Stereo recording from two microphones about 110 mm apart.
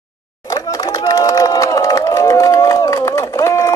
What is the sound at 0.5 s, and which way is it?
Crowd, 35° left (ahead or behind).